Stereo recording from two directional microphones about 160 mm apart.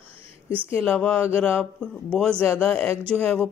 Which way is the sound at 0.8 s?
5° left (ahead or behind).